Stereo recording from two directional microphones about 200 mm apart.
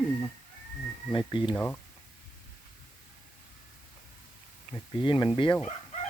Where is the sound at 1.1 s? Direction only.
25° left (ahead or behind).